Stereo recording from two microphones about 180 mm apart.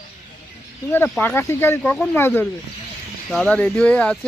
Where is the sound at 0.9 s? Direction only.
10° left (ahead or behind).